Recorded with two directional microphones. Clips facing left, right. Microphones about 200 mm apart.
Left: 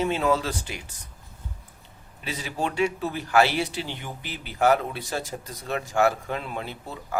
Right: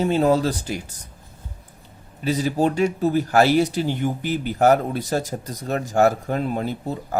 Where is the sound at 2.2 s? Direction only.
40° right (ahead or behind).